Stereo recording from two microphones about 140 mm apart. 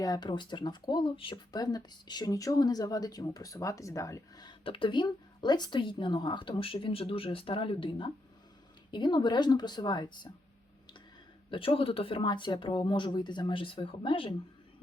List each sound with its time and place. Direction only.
0.0 s speech: 30° left (ahead or behind)
11.5 s speech: 40° left (ahead or behind)